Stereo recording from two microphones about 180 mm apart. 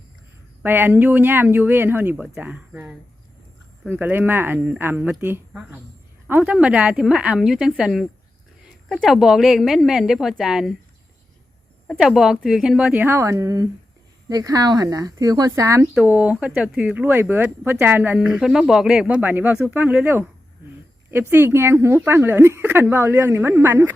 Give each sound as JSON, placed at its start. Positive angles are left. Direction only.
{"t": 0.6, "sound": "a woman's voice", "side_deg": -10}
{"t": 11.9, "sound": "a woman's voice", "side_deg": 0}